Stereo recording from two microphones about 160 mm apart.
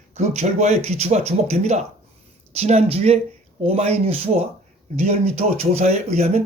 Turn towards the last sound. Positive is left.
turn(degrees=-45)  # may be behind; listen again after turning